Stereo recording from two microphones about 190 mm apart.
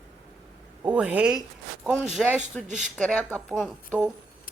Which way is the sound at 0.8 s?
5° right (ahead or behind).